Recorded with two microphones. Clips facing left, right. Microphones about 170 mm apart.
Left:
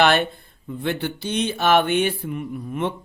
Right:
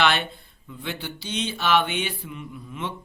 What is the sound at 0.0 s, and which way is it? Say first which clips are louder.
Mantra: left 5 dB; 50° left (ahead or behind).